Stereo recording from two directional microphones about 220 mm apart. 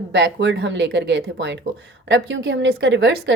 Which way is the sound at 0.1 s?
55° right (ahead or behind).